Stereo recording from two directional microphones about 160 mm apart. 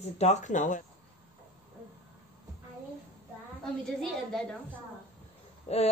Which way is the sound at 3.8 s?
Centre (ahead or behind).